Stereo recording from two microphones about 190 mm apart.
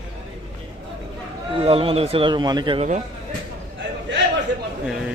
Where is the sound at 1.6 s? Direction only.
30° right (ahead or behind).